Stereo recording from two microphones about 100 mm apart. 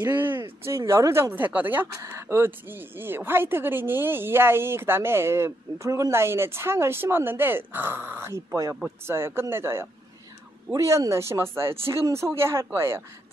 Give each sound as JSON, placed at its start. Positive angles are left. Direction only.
{"t": 0.0, "sound": "speech", "side_deg": -20}